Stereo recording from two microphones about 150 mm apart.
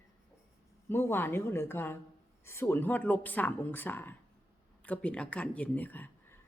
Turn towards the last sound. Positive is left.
turn(degrees=10)  # may be behind; listen again after turning